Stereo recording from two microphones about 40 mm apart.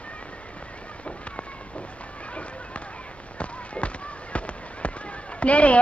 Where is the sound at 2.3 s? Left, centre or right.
Left.